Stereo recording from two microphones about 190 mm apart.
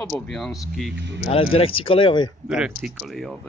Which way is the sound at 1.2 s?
30° left (ahead or behind).